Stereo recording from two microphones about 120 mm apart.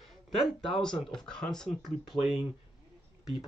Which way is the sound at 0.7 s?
5° left (ahead or behind).